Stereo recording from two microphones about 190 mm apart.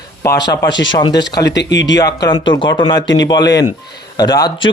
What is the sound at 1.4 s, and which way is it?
Speech, 65° left (ahead or behind).